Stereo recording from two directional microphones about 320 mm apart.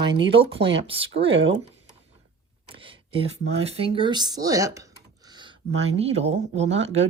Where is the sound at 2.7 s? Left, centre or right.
Centre.